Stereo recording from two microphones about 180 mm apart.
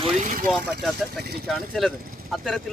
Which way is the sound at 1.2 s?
60° right (ahead or behind).